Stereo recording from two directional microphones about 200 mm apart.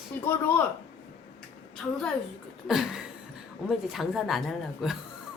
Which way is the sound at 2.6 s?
Centre (ahead or behind).